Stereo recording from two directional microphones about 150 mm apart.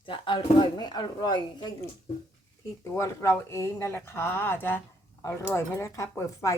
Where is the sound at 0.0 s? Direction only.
35° left (ahead or behind).